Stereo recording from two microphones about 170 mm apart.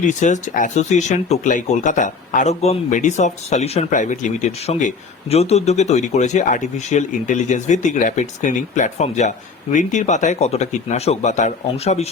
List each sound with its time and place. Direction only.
0.0 s speech: 45° left (ahead or behind)